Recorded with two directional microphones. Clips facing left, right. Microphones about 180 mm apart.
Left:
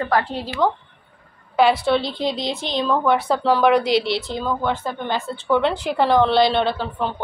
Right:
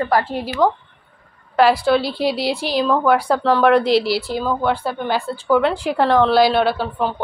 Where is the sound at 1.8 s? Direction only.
5° right (ahead or behind).